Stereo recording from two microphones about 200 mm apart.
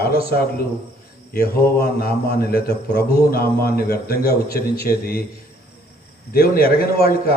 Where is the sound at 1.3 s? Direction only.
50° left (ahead or behind).